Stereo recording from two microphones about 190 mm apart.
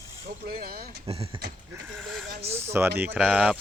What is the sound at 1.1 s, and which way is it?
Speech, 30° right (ahead or behind).